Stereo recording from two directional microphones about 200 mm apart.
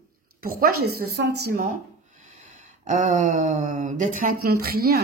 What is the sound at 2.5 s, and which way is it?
Speech, 40° right (ahead or behind).